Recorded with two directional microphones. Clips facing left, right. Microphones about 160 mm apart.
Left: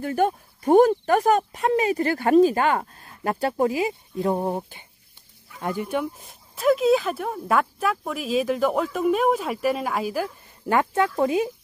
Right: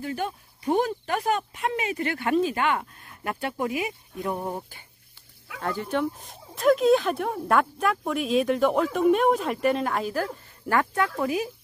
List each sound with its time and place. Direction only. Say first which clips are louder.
0.0 s speech: left 8 dB; 50° left (ahead or behind); by 10.2 s 5° left (ahead or behind)
10.7 s speech: left 3 dB; 20° left (ahead or behind)